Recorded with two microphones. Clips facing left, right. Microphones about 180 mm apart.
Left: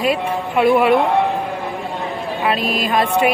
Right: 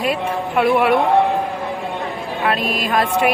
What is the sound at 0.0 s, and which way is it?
Speech, centre (ahead or behind).